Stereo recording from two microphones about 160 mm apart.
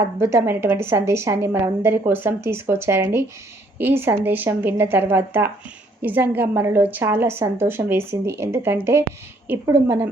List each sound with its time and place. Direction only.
0.2 s a woman's voice: 15° right (ahead or behind)